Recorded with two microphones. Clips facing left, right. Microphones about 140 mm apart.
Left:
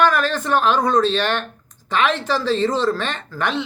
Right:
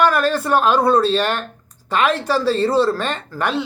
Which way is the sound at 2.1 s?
40° right (ahead or behind).